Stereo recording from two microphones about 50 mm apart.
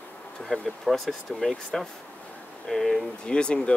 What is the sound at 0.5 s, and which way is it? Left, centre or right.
Speech, centre.